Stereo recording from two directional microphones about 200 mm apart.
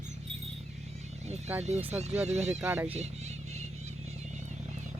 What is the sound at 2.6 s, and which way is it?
Speech, 10° right (ahead or behind).